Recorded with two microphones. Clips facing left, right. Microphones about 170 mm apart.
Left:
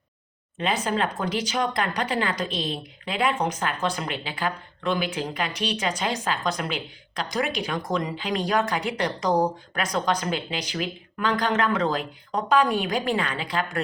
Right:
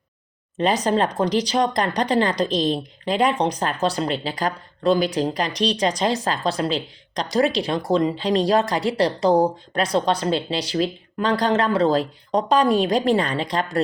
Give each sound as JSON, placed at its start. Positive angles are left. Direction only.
{"t": 0.5, "sound": "speech", "side_deg": -40}